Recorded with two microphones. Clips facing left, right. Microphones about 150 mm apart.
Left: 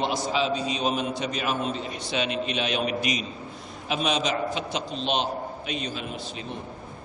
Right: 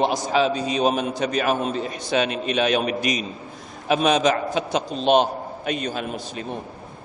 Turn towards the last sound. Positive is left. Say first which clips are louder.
# right 6 dB
turn(degrees=-50)  # may be behind; listen again after turning